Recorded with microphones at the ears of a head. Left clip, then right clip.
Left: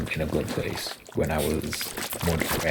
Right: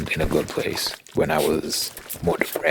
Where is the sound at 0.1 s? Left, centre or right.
Right.